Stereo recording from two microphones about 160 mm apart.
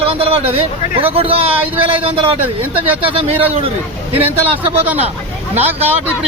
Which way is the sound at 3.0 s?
40° right (ahead or behind).